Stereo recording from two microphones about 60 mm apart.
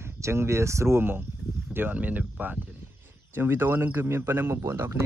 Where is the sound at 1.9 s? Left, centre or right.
Right.